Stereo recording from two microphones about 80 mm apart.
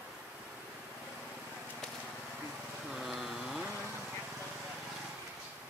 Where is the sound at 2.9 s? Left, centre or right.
Centre.